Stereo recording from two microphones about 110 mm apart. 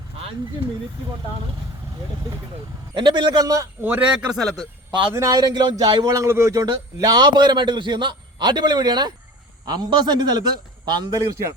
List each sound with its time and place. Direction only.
2.9 s a man's voice: 45° right (ahead or behind)
3.8 s speech: 15° right (ahead or behind); by 4.7 s centre (ahead or behind)
5.1 s speech: 35° right (ahead or behind)